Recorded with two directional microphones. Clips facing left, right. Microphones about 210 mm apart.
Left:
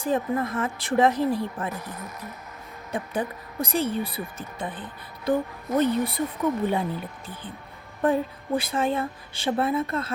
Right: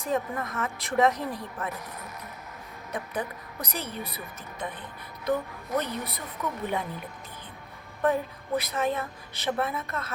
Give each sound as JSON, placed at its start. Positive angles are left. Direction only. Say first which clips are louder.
{"t": 0.0, "sound": "speech", "louder": "left 5 dB", "side_deg": 30}
{"t": 8.0, "sound": "speech", "louder": "left 3 dB", "side_deg": 30}